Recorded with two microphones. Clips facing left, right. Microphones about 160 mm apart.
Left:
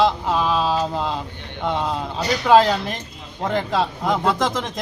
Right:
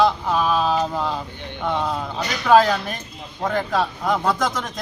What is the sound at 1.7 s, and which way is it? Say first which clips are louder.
A man's voice: even; 15° left (ahead or behind).